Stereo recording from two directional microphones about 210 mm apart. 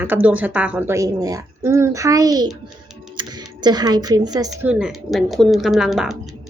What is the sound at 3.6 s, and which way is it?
A woman's voice, 20° right (ahead or behind).